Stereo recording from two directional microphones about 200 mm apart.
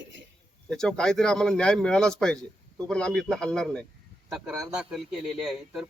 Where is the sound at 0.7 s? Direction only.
5° left (ahead or behind).